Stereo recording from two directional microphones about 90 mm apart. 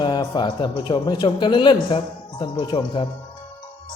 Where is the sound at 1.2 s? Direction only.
60° left (ahead or behind).